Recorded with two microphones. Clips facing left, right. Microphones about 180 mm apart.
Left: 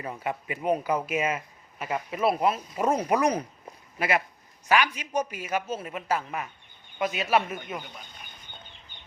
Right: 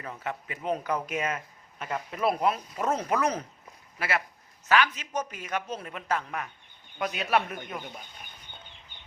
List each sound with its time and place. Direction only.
0.0 s a man's voice: 15° left (ahead or behind)